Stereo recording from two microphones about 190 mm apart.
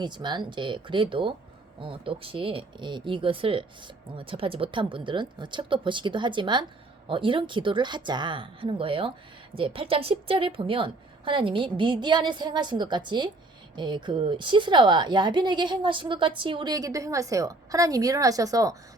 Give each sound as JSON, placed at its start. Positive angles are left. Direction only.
{"t": 0.0, "sound": "a woman's voice", "side_deg": -25}